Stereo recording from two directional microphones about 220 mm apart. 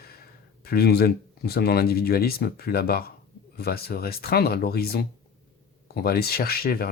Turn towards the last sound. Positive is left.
turn(degrees=45)  # may be behind; listen again after turning